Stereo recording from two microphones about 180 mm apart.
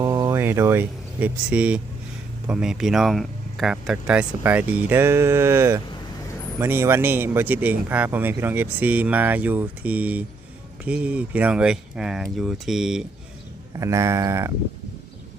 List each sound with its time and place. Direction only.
0.0 s speech: 15° right (ahead or behind)
13.7 s speech: 15° right (ahead or behind)